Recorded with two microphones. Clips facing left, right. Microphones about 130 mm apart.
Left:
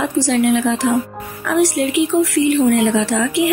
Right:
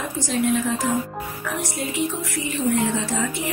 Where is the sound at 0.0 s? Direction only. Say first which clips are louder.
Left 8 dB; 75° left (ahead or behind).